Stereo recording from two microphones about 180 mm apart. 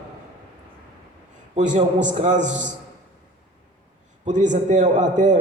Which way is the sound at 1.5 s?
40° right (ahead or behind).